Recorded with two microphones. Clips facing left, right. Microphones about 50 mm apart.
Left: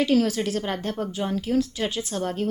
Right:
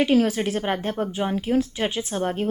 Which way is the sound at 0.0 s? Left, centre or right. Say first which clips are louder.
Right 2 dB; right.